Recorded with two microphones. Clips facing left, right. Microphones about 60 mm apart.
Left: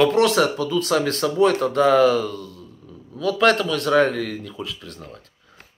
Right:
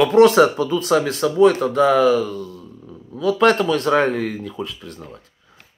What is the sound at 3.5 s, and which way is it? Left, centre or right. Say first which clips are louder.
Speech: right 2 dB; right.